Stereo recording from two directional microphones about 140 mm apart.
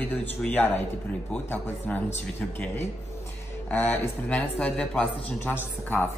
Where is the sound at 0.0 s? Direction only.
10° left (ahead or behind).